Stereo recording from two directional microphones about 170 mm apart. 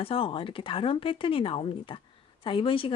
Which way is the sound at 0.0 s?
35° left (ahead or behind).